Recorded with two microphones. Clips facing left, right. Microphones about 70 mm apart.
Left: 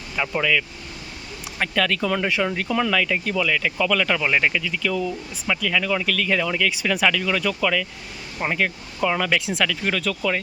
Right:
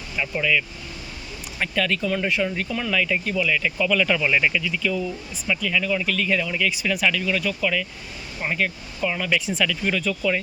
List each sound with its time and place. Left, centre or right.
0.2 s speech: left
1.7 s speech: left
2.6 s speech: left
4.1 s speech: left
4.6 s speech: left